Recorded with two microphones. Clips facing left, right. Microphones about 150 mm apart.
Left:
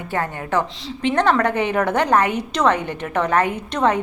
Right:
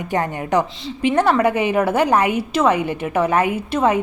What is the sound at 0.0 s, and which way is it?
Speech, 15° right (ahead or behind).